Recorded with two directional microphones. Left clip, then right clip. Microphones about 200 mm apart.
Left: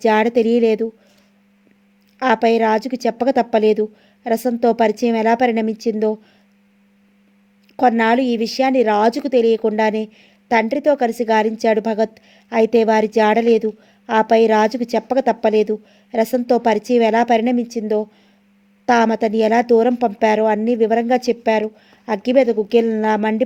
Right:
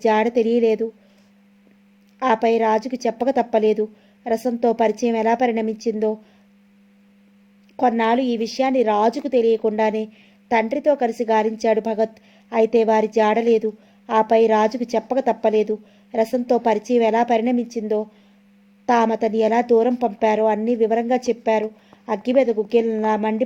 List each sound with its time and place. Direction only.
0.0 s a woman's voice: 35° left (ahead or behind)
2.1 s a woman's voice: 35° left (ahead or behind)
7.8 s a woman's voice: 35° left (ahead or behind)